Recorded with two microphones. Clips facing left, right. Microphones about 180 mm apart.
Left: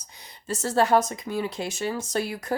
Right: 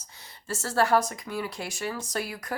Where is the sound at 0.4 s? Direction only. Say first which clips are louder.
Left 3 dB; 20° left (ahead or behind).